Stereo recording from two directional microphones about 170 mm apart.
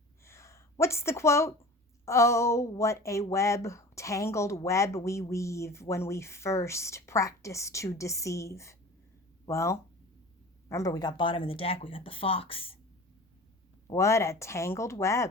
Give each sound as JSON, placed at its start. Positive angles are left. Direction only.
{"t": 0.3, "sound": "a sound", "side_deg": 15}
{"t": 2.0, "sound": "speech", "side_deg": 15}
{"t": 13.9, "sound": "speech", "side_deg": 15}